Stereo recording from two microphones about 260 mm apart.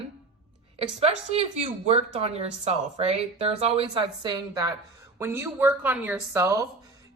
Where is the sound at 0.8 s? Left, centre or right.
Right.